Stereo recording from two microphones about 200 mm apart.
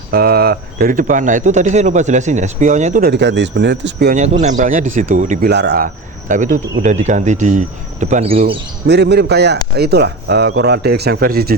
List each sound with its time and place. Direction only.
0.1 s speech: 50° right (ahead or behind)
3.1 s speech: 60° right (ahead or behind)
4.1 s speech: 35° right (ahead or behind)
5.5 s speech: 55° right (ahead or behind); by 8.5 s 30° right (ahead or behind)
8.9 s speech: 55° right (ahead or behind)